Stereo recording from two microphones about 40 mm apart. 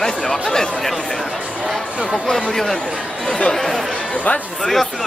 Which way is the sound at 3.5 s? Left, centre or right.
Centre.